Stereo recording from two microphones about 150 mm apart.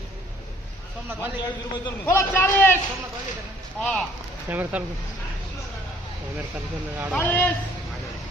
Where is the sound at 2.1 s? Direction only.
15° left (ahead or behind).